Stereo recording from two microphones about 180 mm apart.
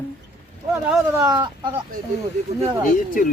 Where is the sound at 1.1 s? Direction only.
20° right (ahead or behind).